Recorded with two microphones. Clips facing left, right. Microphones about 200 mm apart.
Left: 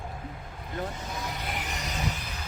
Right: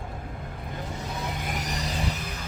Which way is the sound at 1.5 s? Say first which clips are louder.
Right 3 dB; 40° right (ahead or behind).